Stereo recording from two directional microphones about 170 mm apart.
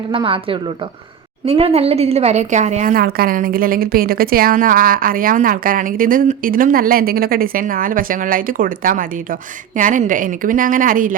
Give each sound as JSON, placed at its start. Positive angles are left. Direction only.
{"t": 0.1, "sound": "a woman's voice", "side_deg": -30}
{"t": 2.9, "sound": "a woman's voice", "side_deg": -60}